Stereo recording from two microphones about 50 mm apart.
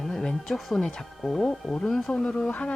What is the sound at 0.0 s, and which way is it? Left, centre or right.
Speech, centre.